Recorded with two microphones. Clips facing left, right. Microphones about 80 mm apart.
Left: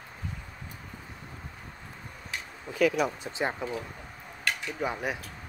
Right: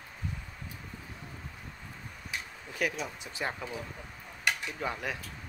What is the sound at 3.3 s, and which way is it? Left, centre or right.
Speech, left.